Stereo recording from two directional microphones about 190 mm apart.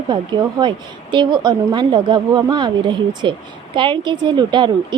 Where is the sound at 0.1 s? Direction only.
25° right (ahead or behind).